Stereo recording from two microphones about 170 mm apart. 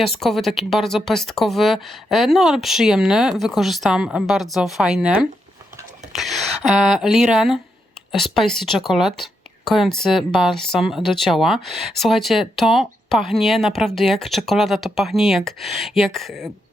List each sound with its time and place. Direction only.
0.0 s speech: centre (ahead or behind)